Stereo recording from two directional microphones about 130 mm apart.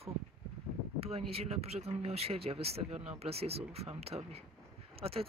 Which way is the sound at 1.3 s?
50° right (ahead or behind).